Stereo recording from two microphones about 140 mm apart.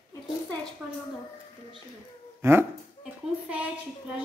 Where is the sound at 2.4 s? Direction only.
20° right (ahead or behind).